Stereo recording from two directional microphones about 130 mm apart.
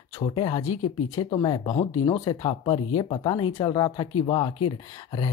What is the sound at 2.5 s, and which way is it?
Speech, 40° left (ahead or behind).